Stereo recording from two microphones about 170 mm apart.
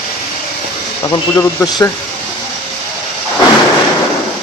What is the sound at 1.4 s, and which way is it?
Speech, 15° left (ahead or behind).